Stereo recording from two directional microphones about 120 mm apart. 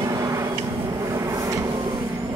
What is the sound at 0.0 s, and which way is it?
Vehicle, 30° right (ahead or behind).